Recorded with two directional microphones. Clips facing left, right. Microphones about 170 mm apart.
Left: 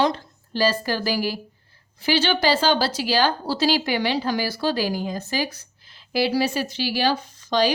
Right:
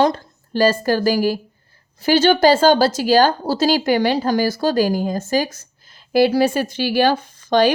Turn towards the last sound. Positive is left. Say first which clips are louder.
# right 6 dB
turn(degrees=-55)  # may be behind; listen again after turning